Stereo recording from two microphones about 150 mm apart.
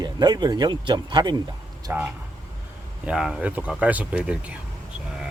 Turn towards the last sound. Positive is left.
turn(degrees=-10)  # may be behind; listen again after turning